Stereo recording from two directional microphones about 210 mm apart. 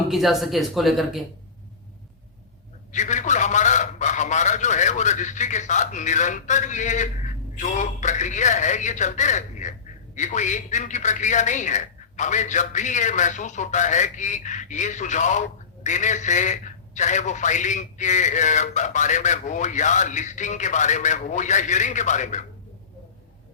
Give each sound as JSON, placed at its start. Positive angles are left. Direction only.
{"t": 0.1, "sound": "speech", "side_deg": 0}
{"t": 2.9, "sound": "a man's voice", "side_deg": 35}